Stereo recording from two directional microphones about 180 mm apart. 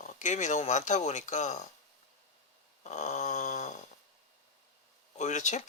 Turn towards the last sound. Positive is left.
turn(degrees=40)  # may be behind; listen again after turning